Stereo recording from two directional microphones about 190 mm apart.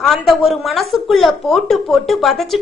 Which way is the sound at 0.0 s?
Centre (ahead or behind).